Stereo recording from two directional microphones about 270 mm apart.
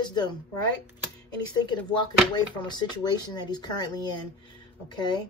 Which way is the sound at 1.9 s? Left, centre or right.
Centre.